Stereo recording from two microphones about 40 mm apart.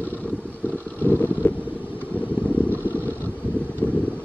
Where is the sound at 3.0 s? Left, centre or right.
Left.